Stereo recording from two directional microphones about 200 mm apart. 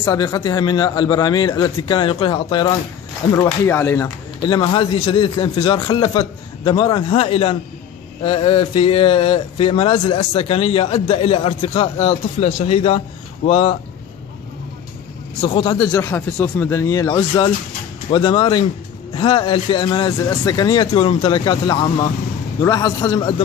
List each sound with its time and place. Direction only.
0.0 s speech: 15° left (ahead or behind)
3.3 s speech: 10° left (ahead or behind)
4.4 s speech: 25° left (ahead or behind)
15.4 s speech: 20° left (ahead or behind)